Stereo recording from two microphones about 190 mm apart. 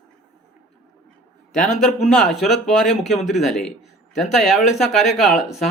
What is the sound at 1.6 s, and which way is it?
Speech, centre (ahead or behind).